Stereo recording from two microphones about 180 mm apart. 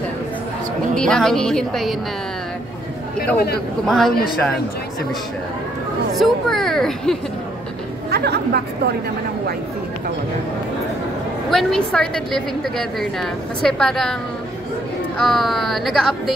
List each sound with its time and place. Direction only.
0.9 s a woman's voice: 5° left (ahead or behind)
3.3 s speech: 60° left (ahead or behind)
3.8 s a woman's voice: centre (ahead or behind)
6.1 s a woman's voice: centre (ahead or behind)
8.1 s a woman's voice: 65° right (ahead or behind)
11.5 s a woman's voice: 5° left (ahead or behind)
15.1 s a woman's voice: centre (ahead or behind)